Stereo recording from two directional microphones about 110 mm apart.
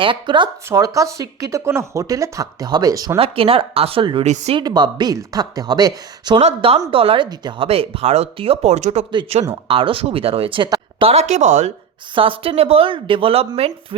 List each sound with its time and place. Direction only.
0.0 s speech: 50° right (ahead or behind)
0.7 s speech: 30° right (ahead or behind)
3.2 s speech: 55° right (ahead or behind)
4.2 s speech: 80° right
4.5 s speech: 40° right (ahead or behind)
6.4 s speech: 60° right (ahead or behind); by 9.0 s 90° right
9.3 s speech: 65° right (ahead or behind)
11.0 s speech: 75° right (ahead or behind)
12.1 s speech: 55° right (ahead or behind)